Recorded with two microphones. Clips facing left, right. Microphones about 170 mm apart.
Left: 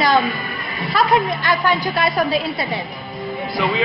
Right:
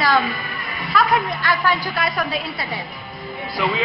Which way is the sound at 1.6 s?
25° left (ahead or behind).